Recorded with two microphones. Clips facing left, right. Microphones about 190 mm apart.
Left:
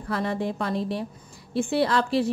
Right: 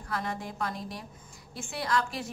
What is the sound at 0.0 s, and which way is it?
A woman's voice, 30° left (ahead or behind).